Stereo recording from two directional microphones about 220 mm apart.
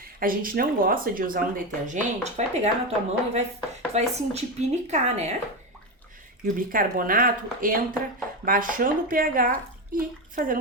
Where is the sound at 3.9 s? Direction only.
30° right (ahead or behind).